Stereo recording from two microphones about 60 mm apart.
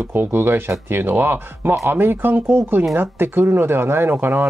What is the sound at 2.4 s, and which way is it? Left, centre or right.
Speech, right.